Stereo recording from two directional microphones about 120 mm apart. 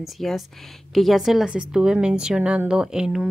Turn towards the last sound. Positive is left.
turn(degrees=-5)  # may be behind; listen again after turning